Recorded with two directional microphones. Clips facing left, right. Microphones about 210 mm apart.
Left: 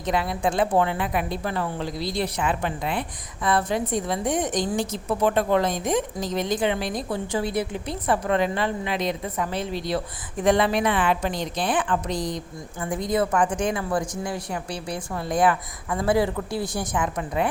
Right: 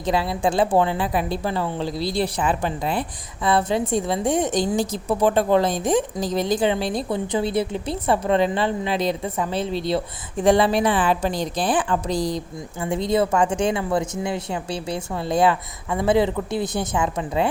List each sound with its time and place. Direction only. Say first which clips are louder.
0.0 s a woman's voice: right 3 dB; 30° right (ahead or behind)